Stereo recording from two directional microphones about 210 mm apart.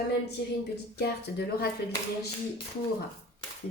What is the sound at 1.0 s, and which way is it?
Speech, 50° left (ahead or behind).